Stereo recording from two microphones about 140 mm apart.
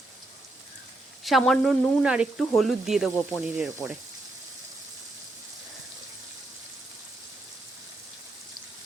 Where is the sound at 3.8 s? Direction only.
25° left (ahead or behind).